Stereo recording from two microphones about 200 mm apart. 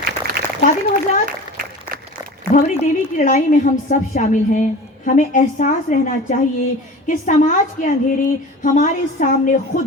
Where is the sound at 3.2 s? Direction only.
40° left (ahead or behind).